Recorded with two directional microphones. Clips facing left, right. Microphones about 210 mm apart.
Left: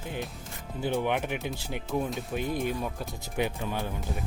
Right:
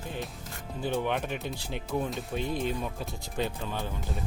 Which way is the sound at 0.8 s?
15° left (ahead or behind).